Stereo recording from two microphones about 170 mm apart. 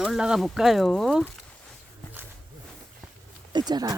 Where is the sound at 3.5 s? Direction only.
25° right (ahead or behind).